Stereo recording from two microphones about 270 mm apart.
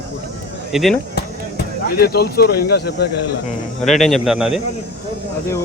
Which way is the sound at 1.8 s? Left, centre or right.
Left.